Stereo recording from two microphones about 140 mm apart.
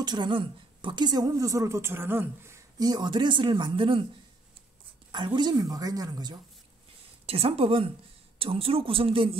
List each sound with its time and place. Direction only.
0.0 s a woman's voice: 30° right (ahead or behind)
5.1 s a woman's voice: 35° right (ahead or behind)
7.2 s a woman's voice: 45° right (ahead or behind)